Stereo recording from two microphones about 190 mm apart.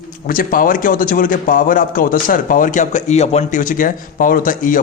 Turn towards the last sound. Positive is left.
turn(degrees=45)  # may be behind; listen again after turning